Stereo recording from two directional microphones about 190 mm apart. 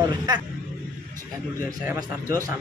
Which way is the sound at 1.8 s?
15° right (ahead or behind).